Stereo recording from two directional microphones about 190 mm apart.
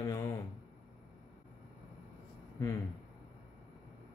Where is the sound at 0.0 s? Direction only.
15° left (ahead or behind).